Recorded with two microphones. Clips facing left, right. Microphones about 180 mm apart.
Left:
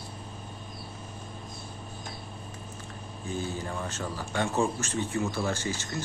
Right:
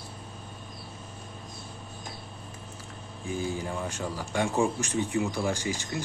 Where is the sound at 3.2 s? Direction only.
10° right (ahead or behind).